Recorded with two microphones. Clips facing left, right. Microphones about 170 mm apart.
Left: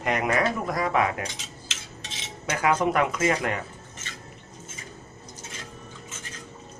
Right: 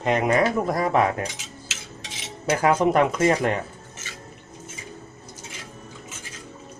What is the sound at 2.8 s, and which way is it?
Speech, 30° right (ahead or behind).